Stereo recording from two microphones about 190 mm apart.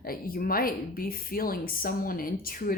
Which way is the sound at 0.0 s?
50° left (ahead or behind).